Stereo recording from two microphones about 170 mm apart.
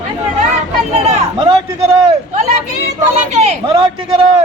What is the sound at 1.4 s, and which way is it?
Speech, 35° right (ahead or behind).